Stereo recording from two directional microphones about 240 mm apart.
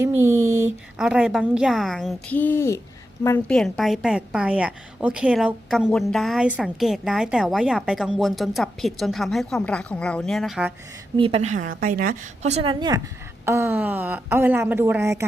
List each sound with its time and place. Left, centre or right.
0.0 s a woman's voice: centre
11.2 s a woman's voice: right; by 15.2 s centre